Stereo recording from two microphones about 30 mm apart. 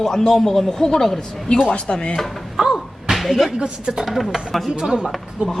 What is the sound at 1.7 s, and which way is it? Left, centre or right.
Speech, left.